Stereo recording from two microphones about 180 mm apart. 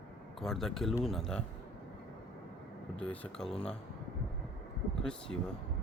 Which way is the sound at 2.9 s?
5° left (ahead or behind).